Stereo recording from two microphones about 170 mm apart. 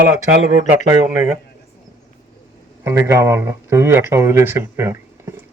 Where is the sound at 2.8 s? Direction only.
15° right (ahead or behind).